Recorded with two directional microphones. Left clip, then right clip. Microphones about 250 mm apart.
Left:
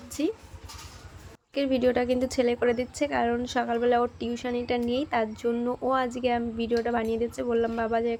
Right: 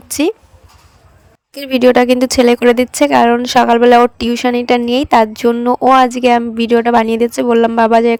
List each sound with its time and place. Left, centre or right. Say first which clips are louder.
0.1 s speech: right 14 dB; right
1.5 s speech: right 14 dB; right